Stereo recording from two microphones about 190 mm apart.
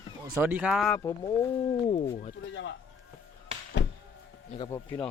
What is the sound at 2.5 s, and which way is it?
Speech, 75° left (ahead or behind).